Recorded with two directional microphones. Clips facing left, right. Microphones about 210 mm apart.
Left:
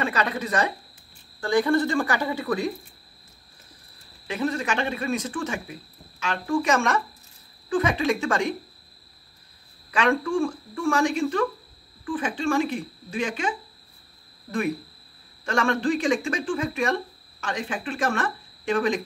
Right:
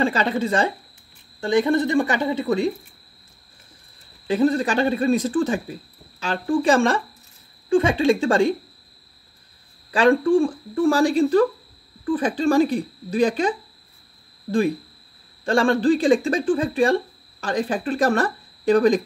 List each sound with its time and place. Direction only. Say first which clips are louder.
0.0 s speech: right 5 dB; 30° right (ahead or behind)
4.3 s speech: right 7 dB; 35° right (ahead or behind)
9.8 s speech: right 7 dB; 35° right (ahead or behind)
15.4 s speech: right 6 dB; 30° right (ahead or behind)